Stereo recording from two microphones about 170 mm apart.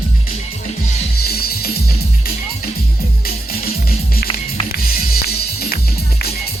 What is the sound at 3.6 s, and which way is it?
Music, 65° left (ahead or behind).